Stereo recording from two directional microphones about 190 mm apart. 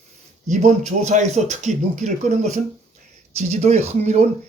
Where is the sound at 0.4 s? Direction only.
40° right (ahead or behind).